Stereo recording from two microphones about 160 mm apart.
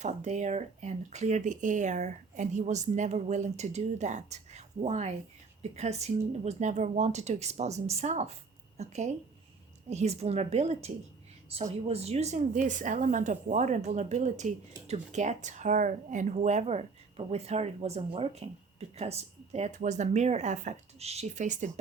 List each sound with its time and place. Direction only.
0.0 s a woman's voice: 45° right (ahead or behind)